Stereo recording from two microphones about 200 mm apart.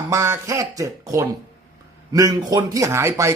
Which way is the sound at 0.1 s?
15° right (ahead or behind).